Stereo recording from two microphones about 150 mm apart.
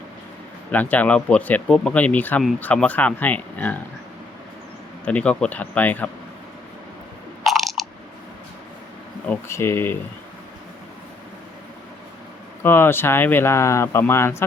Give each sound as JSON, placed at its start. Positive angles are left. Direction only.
{"t": 0.7, "sound": "speech", "side_deg": 10}
{"t": 5.0, "sound": "speech", "side_deg": 10}
{"t": 7.4, "sound": "chewing", "side_deg": 0}
{"t": 9.2, "sound": "speech", "side_deg": 15}
{"t": 12.6, "sound": "speech", "side_deg": 15}